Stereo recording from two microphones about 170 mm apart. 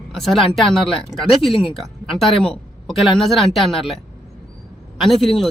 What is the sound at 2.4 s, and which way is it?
Speech, centre (ahead or behind).